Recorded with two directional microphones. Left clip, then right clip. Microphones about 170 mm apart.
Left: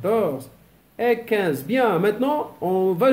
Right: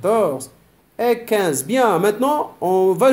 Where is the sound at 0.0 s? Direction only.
15° right (ahead or behind).